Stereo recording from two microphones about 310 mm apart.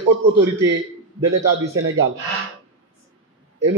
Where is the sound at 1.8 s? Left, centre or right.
Right.